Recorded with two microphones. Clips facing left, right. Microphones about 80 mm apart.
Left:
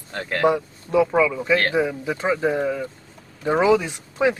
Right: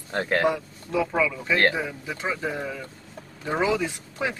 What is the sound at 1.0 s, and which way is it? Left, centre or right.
Speech, centre.